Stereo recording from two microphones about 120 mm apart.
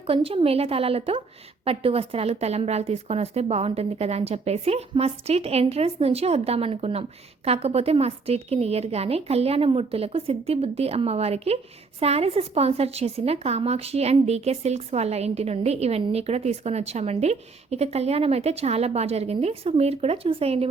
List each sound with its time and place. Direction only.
0.1 s a woman's voice: 50° right (ahead or behind)